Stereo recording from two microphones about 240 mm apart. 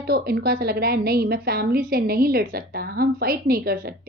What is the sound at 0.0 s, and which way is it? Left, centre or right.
A woman's voice, right.